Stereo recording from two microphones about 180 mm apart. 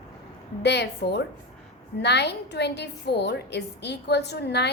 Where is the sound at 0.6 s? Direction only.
70° left (ahead or behind).